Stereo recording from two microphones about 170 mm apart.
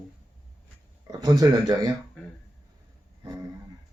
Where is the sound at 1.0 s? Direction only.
20° right (ahead or behind).